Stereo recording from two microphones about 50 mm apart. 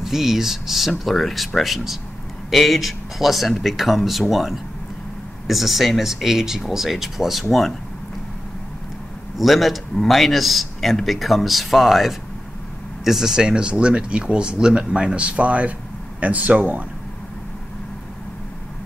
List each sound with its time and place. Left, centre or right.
0.0 s speech: centre
9.4 s speech: centre; by 16.8 s right